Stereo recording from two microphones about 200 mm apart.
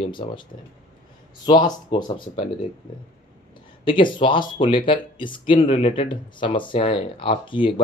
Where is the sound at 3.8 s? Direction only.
25° left (ahead or behind).